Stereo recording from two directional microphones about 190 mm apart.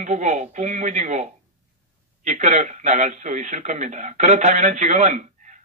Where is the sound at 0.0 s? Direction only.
40° right (ahead or behind).